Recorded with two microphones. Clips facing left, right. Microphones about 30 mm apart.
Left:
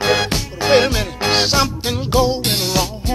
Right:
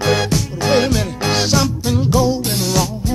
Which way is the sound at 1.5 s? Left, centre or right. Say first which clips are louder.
Even; left.